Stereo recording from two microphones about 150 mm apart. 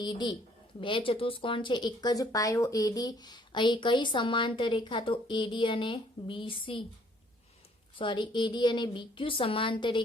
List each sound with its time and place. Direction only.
0.0 s speech: 30° left (ahead or behind)
7.9 s speech: 35° left (ahead or behind)